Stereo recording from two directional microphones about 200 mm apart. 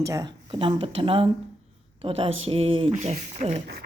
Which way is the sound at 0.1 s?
20° right (ahead or behind).